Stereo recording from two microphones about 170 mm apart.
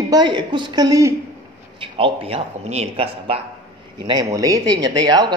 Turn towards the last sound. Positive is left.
turn(degrees=-25)  # may be behind; listen again after turning